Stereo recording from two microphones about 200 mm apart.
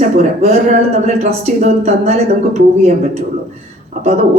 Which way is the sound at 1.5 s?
35° right (ahead or behind).